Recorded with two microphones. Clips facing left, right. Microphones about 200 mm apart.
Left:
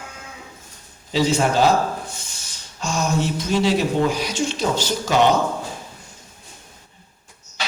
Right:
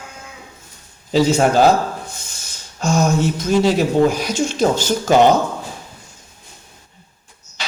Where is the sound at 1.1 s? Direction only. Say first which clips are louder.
Right 5 dB; 45° right (ahead or behind).